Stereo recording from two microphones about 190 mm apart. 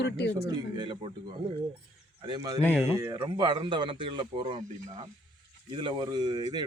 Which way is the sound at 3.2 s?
25° right (ahead or behind).